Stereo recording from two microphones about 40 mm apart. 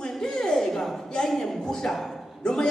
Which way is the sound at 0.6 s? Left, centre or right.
Centre.